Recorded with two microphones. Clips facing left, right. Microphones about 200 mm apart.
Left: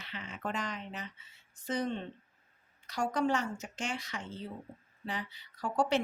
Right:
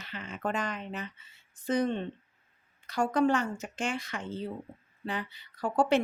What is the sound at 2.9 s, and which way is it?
Speech, 55° right (ahead or behind).